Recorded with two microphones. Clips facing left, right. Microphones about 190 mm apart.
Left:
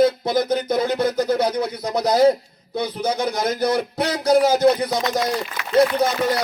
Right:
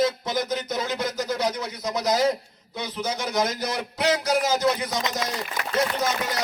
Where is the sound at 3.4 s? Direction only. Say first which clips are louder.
Left 8 dB; 60° left (ahead or behind).